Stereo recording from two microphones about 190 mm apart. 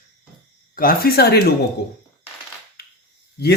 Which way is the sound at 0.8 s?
50° left (ahead or behind).